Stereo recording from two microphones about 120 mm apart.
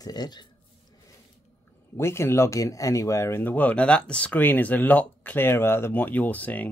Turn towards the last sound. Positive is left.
turn(degrees=15)  # may be behind; listen again after turning